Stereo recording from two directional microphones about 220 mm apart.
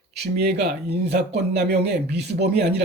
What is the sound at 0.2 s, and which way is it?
A man's voice, 50° right (ahead or behind).